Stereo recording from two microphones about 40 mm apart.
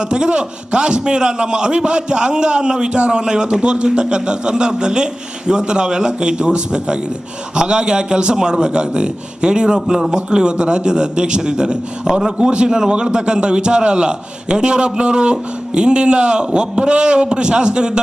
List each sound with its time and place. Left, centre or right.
0.1 s a man's voice: right